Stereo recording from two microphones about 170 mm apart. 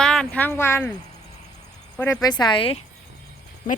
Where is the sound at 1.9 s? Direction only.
15° left (ahead or behind).